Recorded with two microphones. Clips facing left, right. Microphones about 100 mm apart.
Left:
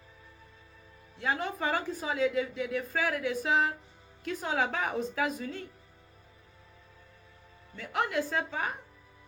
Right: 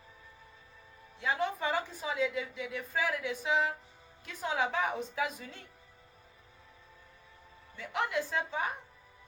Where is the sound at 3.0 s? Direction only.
85° left.